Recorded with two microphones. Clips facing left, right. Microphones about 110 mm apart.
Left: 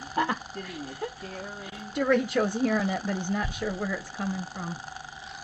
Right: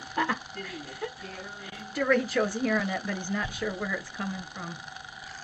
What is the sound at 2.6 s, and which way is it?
Speech, 35° left (ahead or behind).